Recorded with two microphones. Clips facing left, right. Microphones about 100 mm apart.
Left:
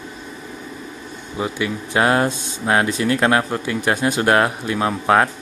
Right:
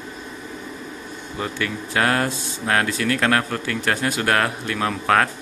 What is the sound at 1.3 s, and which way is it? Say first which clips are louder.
Speech: left 3 dB; 15° left (ahead or behind).